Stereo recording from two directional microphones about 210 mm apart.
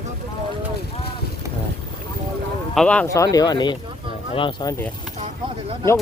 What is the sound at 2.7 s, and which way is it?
Speech, 5° left (ahead or behind).